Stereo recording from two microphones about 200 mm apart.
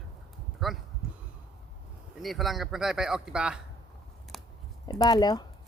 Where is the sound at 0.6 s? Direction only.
Centre (ahead or behind).